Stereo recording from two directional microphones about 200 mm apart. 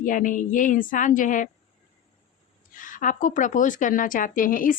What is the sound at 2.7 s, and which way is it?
A woman's voice, 40° left (ahead or behind).